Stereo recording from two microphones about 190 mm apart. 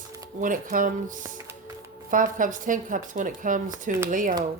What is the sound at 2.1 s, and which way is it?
Speech, 45° right (ahead or behind).